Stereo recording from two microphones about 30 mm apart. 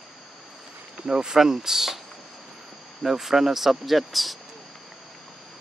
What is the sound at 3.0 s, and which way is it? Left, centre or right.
Speech, centre.